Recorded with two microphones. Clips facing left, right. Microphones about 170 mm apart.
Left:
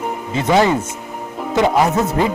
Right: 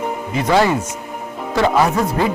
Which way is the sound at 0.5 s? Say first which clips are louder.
Left 1 dB; 20° left (ahead or behind).